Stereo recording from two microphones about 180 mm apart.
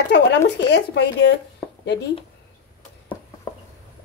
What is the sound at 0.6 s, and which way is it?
Speech, 75° left (ahead or behind).